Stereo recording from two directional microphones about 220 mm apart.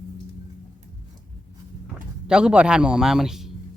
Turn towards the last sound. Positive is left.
turn(degrees=0)  # may be behind; listen again after turning